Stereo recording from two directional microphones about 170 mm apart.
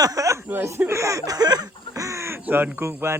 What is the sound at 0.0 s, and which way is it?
Speech, 20° right (ahead or behind).